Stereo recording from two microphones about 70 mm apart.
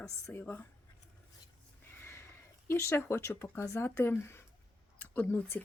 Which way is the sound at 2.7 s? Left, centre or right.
Left.